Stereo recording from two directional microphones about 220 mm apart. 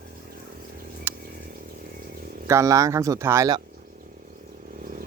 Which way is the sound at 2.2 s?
40° right (ahead or behind).